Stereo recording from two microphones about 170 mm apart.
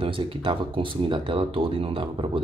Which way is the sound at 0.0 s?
30° right (ahead or behind).